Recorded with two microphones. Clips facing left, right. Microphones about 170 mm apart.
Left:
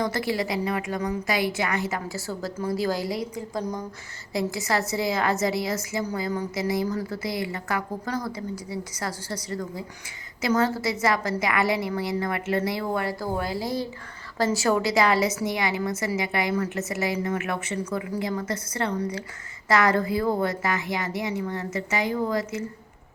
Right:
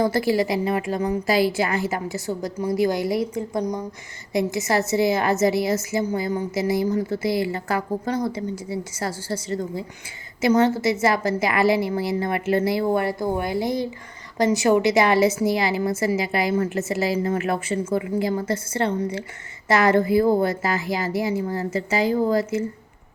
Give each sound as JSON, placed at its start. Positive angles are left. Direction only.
{"t": 0.0, "sound": "a woman's voice", "side_deg": -30}